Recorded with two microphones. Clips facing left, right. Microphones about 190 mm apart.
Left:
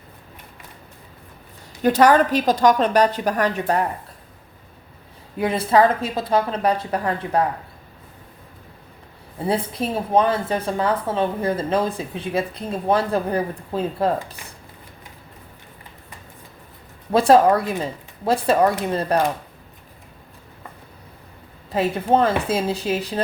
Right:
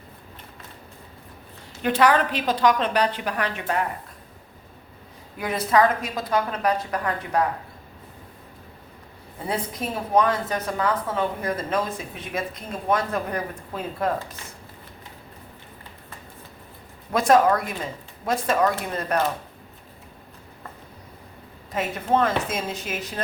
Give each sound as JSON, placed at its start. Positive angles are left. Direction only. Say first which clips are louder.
{"t": 1.8, "sound": "a woman's voice", "louder": "left 5 dB", "side_deg": 40}
{"t": 5.4, "sound": "speech", "louder": "left 3 dB", "side_deg": 30}
{"t": 9.5, "sound": "speech", "louder": "left 5 dB", "side_deg": 30}
{"t": 17.1, "sound": "a woman's voice", "louder": "left 4 dB", "side_deg": 30}
{"t": 21.7, "sound": "a woman's voice", "louder": "left 5 dB", "side_deg": 30}